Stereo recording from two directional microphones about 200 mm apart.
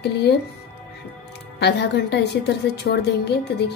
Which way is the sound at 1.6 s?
55° left (ahead or behind).